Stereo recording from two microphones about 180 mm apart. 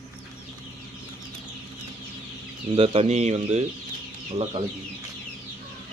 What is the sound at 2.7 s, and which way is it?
Speech, 30° right (ahead or behind).